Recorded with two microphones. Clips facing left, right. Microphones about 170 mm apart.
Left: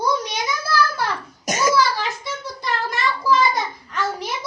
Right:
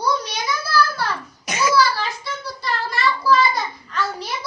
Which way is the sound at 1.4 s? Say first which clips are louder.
Left 2 dB; 45° left (ahead or behind).